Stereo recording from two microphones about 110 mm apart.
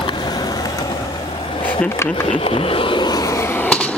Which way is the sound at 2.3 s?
60° left (ahead or behind).